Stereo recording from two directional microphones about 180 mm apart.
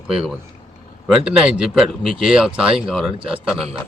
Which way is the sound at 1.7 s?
5° right (ahead or behind).